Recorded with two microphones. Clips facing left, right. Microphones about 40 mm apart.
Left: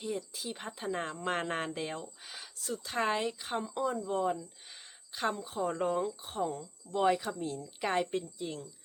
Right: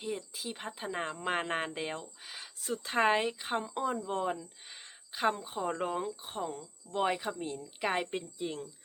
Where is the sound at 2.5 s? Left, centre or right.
Right.